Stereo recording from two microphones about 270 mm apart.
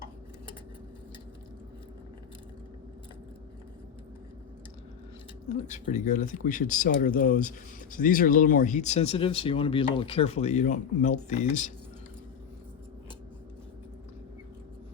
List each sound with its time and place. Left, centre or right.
5.5 s speech: left